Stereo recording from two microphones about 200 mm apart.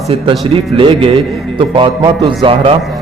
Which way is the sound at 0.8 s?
25° right (ahead or behind).